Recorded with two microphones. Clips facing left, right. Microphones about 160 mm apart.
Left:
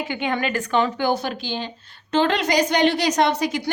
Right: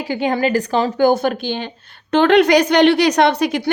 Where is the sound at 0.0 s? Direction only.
35° right (ahead or behind).